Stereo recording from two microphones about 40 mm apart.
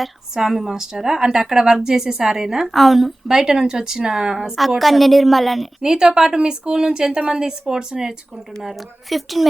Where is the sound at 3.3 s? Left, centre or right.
Centre.